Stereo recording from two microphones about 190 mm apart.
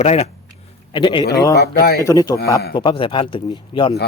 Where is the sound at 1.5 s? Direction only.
55° left (ahead or behind).